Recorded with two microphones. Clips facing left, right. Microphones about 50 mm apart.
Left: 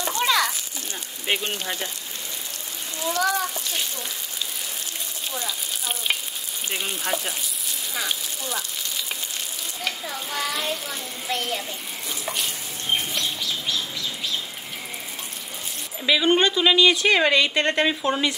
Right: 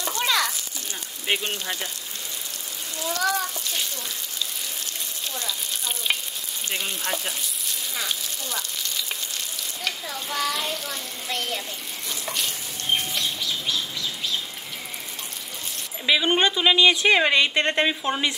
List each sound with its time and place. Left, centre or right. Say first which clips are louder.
0.2 s a sound: left 2 dB; centre
1.2 s speech: even; centre
3.2 s a child's voice: left 1 dB; centre
5.3 s frying: left 1 dB; centre
6.7 s a child's voice: left 1 dB; centre
12.1 s frying: left 1 dB; centre
12.9 s bird flight: even; centre
16.1 s a woman's voice: left 1 dB; centre